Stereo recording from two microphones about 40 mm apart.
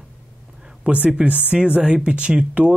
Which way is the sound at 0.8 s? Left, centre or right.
Right.